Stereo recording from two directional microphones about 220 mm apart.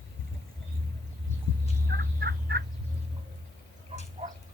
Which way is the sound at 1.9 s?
50° right (ahead or behind).